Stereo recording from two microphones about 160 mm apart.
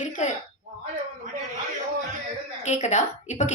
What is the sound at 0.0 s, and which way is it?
Speech, 50° left (ahead or behind).